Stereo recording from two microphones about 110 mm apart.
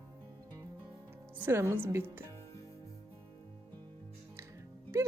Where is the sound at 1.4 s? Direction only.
20° right (ahead or behind).